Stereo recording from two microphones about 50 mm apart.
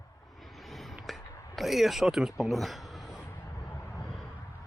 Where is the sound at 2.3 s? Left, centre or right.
Centre.